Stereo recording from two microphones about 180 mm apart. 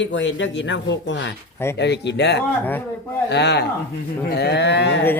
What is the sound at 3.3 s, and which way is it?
Speech, 70° left (ahead or behind).